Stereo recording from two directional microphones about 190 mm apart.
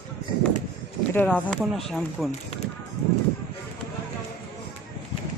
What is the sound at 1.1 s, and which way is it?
Speech, 5° left (ahead or behind).